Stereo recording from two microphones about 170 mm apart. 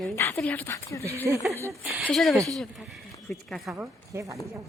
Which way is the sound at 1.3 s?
Centre (ahead or behind).